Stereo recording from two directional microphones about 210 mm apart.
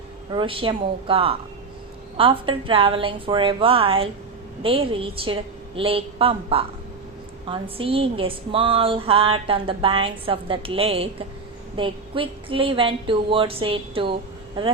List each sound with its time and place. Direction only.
0.3 s a woman's voice: 25° right (ahead or behind)